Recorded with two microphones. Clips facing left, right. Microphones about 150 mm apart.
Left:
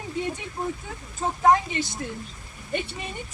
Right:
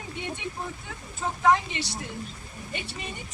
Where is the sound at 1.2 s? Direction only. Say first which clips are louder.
Left 3 dB; 45° left (ahead or behind).